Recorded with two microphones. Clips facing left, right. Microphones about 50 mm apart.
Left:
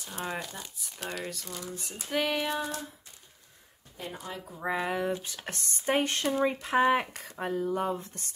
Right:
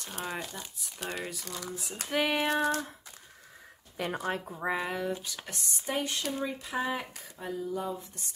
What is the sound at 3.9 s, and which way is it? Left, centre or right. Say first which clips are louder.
Speech: right 7 dB; right.